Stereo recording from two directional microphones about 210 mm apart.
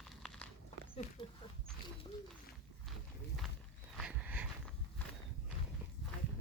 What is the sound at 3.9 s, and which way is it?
Dog, 5° right (ahead or behind).